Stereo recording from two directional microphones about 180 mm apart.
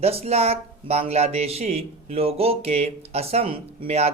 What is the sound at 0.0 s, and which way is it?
Speech, 35° right (ahead or behind).